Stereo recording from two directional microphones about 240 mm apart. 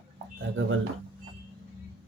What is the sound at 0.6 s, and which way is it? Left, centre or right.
Speech, right.